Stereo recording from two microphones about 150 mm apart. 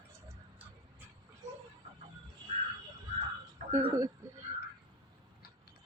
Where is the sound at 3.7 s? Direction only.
20° right (ahead or behind).